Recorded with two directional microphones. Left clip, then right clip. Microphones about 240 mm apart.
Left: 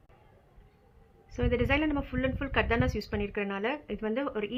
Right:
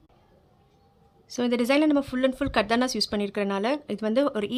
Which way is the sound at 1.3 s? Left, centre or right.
Right.